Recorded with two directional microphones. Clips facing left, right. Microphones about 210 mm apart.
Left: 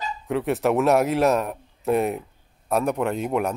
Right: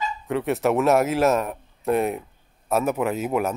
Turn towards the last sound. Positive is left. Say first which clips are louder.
# even
turn(degrees=-5)  # may be behind; listen again after turning